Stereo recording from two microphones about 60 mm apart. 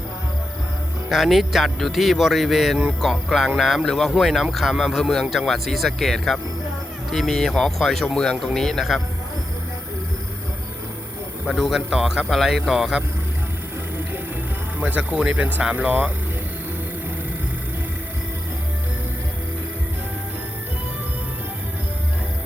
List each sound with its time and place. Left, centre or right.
1.1 s speech: centre
4.9 s speech: centre
11.4 s speech: centre
14.8 s speech: right